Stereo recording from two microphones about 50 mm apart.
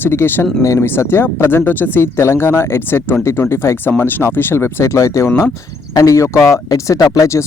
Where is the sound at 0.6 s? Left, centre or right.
Left.